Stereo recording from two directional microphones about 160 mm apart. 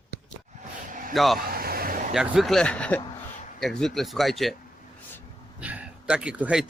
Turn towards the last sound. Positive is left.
turn(degrees=-5)  # may be behind; listen again after turning